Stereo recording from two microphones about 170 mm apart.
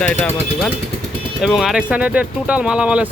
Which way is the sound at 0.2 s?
5° left (ahead or behind).